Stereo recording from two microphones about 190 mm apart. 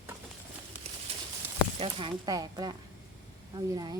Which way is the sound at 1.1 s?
30° right (ahead or behind).